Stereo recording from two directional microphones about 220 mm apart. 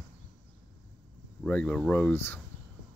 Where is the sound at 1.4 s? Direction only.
5° left (ahead or behind).